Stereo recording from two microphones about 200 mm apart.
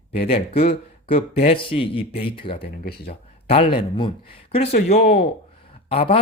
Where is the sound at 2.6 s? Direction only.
50° left (ahead or behind).